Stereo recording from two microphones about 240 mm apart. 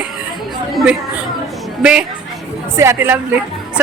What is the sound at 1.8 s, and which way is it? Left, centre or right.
A woman's voice, centre.